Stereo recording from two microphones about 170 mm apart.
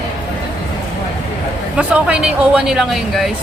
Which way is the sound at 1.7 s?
5° right (ahead or behind).